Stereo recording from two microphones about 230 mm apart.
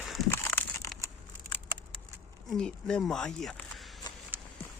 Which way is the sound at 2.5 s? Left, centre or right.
Centre.